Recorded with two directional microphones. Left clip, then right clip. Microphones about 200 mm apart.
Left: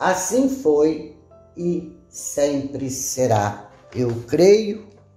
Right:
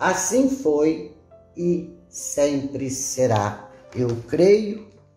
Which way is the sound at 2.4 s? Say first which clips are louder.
Left 1 dB; 10° left (ahead or behind).